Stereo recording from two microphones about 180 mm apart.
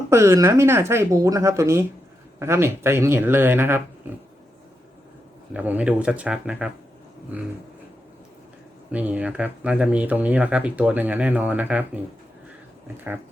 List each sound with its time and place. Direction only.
0.1 s speech: 15° right (ahead or behind)
5.5 s speech: 10° right (ahead or behind)
8.9 s speech: 10° right (ahead or behind)